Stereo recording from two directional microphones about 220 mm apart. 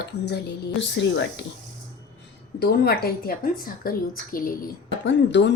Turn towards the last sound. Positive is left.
turn(degrees=55)  # may be behind; listen again after turning